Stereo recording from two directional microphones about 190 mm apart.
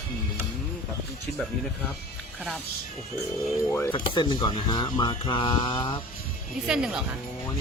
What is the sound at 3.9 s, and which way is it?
Speech, 25° left (ahead or behind).